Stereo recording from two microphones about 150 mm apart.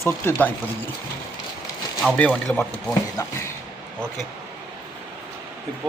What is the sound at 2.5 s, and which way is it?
Speech, 10° left (ahead or behind).